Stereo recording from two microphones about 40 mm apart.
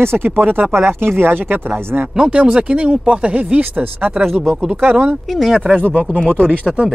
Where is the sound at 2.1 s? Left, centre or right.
Right.